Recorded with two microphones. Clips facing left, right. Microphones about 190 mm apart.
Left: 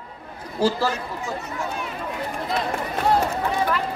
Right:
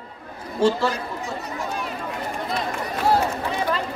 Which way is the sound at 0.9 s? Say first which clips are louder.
Even; 35° right (ahead or behind).